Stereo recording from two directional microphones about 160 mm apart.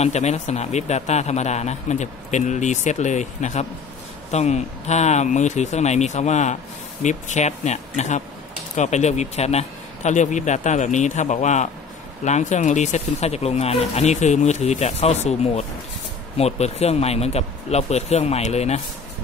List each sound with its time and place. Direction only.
0.0 s speech: 45° left (ahead or behind)